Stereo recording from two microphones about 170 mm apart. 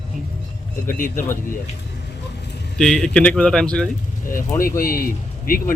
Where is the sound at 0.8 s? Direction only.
50° left (ahead or behind).